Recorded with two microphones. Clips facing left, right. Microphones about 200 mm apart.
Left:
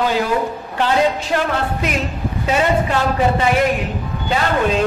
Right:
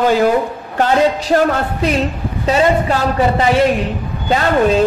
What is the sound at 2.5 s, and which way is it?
A man's voice, 35° right (ahead or behind).